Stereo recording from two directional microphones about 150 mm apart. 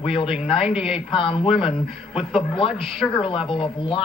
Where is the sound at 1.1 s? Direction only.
35° left (ahead or behind).